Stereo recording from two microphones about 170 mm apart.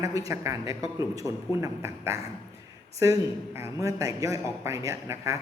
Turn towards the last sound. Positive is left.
turn(degrees=-15)  # may be behind; listen again after turning